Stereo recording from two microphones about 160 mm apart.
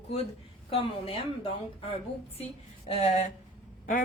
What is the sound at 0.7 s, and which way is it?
Speech, 35° left (ahead or behind).